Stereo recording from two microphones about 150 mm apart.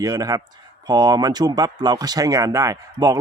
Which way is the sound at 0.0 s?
25° right (ahead or behind).